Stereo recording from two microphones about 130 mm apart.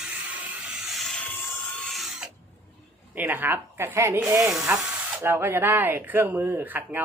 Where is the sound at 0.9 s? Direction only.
10° left (ahead or behind).